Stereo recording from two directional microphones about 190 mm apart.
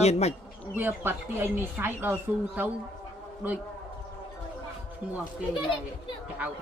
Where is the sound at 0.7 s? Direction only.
10° right (ahead or behind).